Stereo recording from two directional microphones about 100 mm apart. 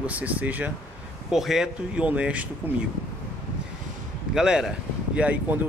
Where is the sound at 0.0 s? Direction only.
15° right (ahead or behind).